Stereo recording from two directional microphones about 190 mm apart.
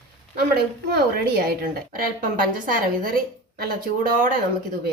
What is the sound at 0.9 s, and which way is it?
A woman's voice, 55° right (ahead or behind).